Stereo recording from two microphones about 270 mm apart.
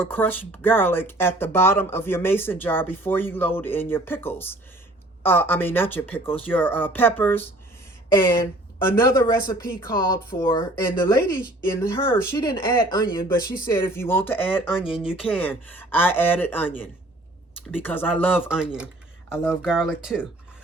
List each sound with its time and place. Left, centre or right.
0.0 s speech: centre